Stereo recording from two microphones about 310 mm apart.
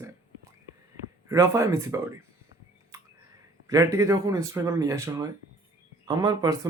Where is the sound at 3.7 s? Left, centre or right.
Centre.